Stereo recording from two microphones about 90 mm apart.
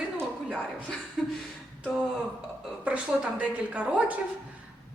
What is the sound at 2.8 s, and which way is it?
A woman's voice, 10° right (ahead or behind).